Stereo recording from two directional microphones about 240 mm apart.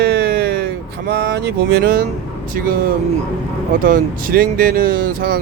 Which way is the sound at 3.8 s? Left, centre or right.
Right.